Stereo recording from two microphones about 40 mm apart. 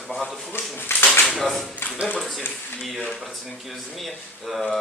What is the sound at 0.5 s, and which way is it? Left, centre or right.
Speech, left.